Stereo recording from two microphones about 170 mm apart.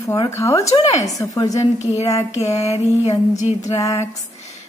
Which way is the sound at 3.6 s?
20° left (ahead or behind).